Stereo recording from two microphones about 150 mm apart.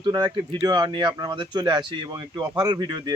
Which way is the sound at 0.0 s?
25° right (ahead or behind).